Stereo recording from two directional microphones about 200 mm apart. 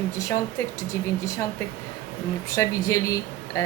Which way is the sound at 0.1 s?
15° left (ahead or behind).